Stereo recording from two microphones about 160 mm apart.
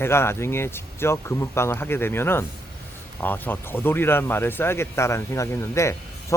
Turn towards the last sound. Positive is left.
turn(degrees=20)  # may be behind; listen again after turning